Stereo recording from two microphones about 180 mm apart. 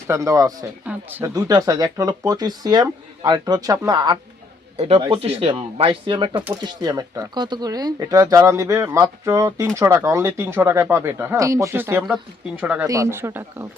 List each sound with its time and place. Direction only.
0.1 s speech: 20° right (ahead or behind)
12.9 s speech: 15° right (ahead or behind)